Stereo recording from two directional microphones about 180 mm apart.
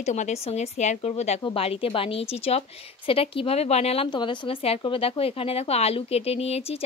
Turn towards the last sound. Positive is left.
turn(degrees=35)  # may be behind; listen again after turning